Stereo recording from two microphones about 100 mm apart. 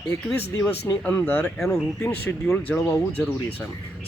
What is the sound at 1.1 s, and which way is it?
Speech, 20° left (ahead or behind).